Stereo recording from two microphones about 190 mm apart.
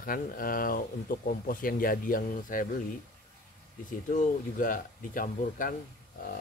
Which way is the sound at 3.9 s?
45° left (ahead or behind).